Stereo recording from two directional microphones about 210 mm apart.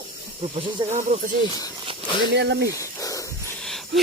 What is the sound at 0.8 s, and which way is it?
Speech, 20° right (ahead or behind).